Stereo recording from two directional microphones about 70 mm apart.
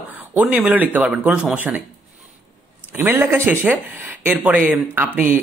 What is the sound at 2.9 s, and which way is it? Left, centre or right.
A man's voice, right.